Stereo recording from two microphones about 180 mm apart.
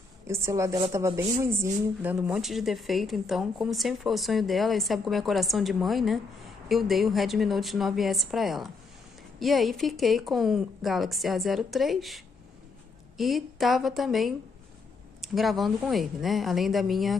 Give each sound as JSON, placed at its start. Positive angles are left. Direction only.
{"t": 0.3, "sound": "a woman's voice", "side_deg": -15}
{"t": 13.2, "sound": "speech", "side_deg": 0}